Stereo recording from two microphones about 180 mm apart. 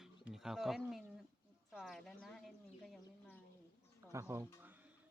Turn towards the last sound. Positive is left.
turn(degrees=-10)  # may be behind; listen again after turning